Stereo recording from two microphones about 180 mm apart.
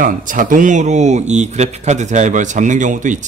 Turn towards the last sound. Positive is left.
turn(degrees=-45)  # may be behind; listen again after turning